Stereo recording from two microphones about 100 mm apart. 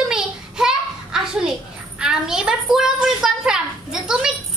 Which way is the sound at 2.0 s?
5° right (ahead or behind).